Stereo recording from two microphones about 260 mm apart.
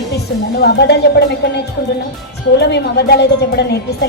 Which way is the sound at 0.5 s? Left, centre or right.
Left.